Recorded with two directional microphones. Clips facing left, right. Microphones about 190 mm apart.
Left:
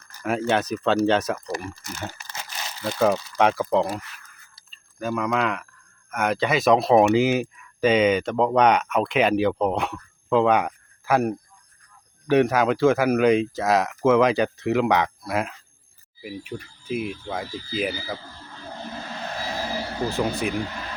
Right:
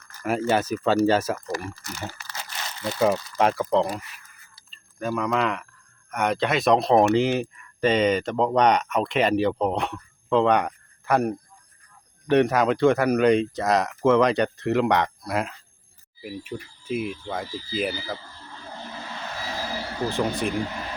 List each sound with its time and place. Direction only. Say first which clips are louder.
0.2 s speech: even; 5° right (ahead or behind)
2.0 s crumpling: even; 15° left (ahead or behind)
2.8 s speech: left 1 dB; centre (ahead or behind)
4.0 s speech: left 1 dB; 5° right (ahead or behind)
20.1 s speech: even; 5° left (ahead or behind)